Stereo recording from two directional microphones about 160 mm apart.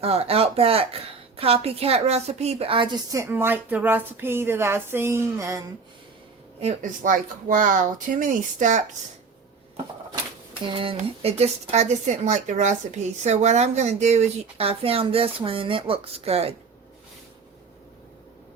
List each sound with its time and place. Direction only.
0.0 s a woman's voice: 40° right (ahead or behind); by 5.6 s 20° right (ahead or behind)
6.6 s speech: 50° right (ahead or behind)
10.5 s speech: 35° right (ahead or behind)